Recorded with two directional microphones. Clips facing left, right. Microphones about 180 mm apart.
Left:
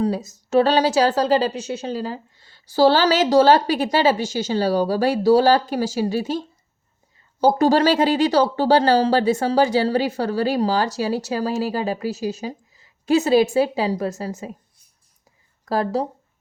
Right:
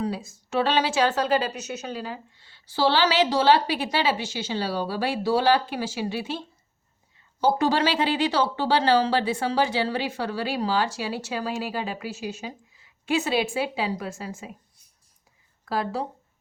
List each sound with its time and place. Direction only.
0.0 s speech: 40° left (ahead or behind)
7.4 s speech: 40° left (ahead or behind)
15.6 s speech: 40° left (ahead or behind)